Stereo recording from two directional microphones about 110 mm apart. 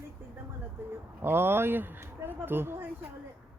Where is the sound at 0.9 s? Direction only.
20° right (ahead or behind).